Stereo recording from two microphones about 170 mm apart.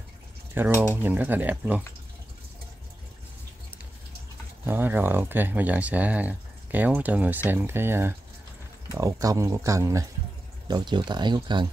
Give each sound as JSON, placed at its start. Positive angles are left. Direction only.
{"t": 0.6, "sound": "speech", "side_deg": -10}
{"t": 4.6, "sound": "speech", "side_deg": -10}